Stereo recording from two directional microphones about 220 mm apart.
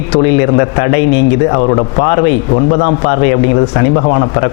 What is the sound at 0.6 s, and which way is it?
Speech, 20° left (ahead or behind).